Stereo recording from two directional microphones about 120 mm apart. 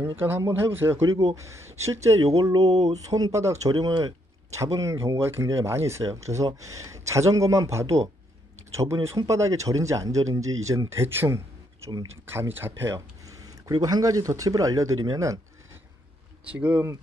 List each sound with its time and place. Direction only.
0.0 s speech: 20° right (ahead or behind)
13.7 s speech: 35° right (ahead or behind)
16.4 s speech: 10° right (ahead or behind)